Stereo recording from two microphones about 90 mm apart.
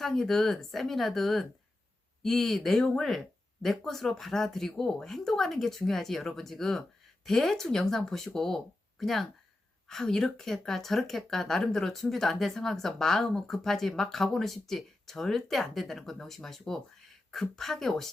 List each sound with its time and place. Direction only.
0.0 s speech: 5° left (ahead or behind)